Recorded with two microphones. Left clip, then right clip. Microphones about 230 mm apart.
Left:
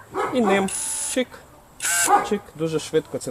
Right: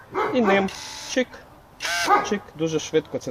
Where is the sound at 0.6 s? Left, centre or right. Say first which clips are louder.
Left 1 dB; centre.